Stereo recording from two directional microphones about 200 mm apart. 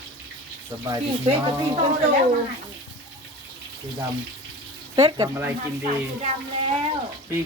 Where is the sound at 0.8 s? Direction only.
20° right (ahead or behind).